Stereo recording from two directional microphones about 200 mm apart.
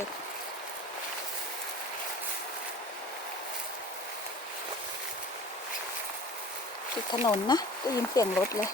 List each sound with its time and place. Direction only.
7.1 s speech: 20° left (ahead or behind)